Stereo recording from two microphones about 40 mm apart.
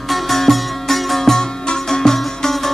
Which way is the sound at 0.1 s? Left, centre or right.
Centre.